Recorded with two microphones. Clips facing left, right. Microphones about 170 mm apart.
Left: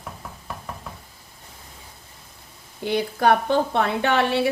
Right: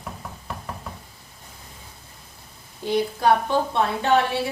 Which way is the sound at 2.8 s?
65° left (ahead or behind).